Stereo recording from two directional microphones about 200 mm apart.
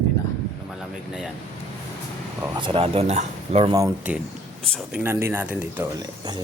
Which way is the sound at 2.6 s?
25° right (ahead or behind).